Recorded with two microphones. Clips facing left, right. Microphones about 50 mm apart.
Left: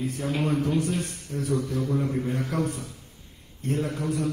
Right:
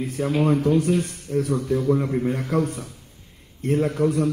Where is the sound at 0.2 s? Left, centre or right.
Right.